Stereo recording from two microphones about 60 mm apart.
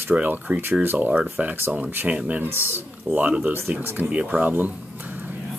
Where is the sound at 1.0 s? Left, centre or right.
Right.